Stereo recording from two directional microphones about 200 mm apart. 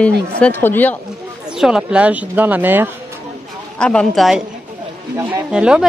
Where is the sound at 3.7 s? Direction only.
5° left (ahead or behind).